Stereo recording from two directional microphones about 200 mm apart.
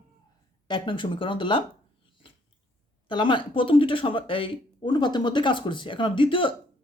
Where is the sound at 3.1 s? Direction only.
25° left (ahead or behind).